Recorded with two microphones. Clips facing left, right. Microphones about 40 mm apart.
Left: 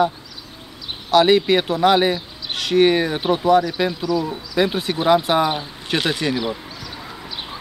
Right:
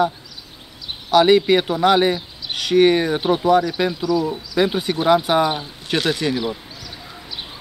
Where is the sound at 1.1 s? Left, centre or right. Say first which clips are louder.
Right 1 dB; centre.